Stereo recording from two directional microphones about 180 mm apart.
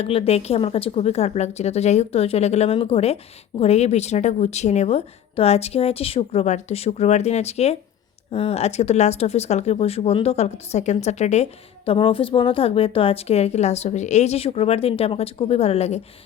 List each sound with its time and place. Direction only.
0.0 s a woman's voice: 35° left (ahead or behind)